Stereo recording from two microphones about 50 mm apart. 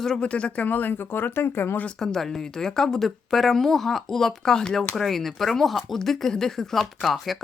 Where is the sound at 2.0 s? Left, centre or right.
Centre.